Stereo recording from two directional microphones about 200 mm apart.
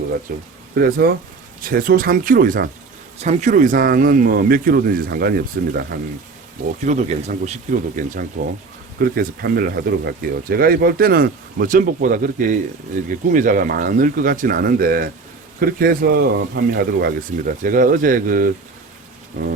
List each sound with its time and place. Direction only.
0.3 s speech: 45° right (ahead or behind)
6.8 s speech: 35° right (ahead or behind)